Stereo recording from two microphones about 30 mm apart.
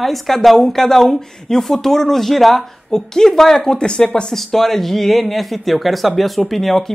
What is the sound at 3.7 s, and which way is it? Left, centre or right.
Speech, left.